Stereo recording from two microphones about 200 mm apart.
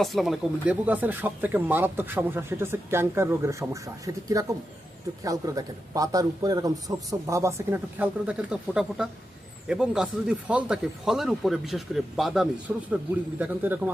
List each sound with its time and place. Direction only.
0.0 s speech: centre (ahead or behind)